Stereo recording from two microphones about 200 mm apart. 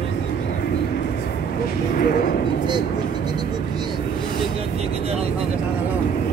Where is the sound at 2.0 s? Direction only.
45° left (ahead or behind).